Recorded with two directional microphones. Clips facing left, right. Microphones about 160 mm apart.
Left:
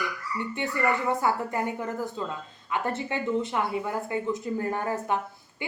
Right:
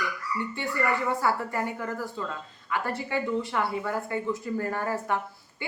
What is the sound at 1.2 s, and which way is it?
A woman's voice, 20° left (ahead or behind).